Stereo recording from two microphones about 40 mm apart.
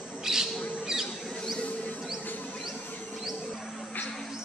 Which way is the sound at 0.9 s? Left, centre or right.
Centre.